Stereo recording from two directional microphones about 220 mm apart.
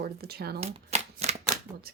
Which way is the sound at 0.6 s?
30° right (ahead or behind).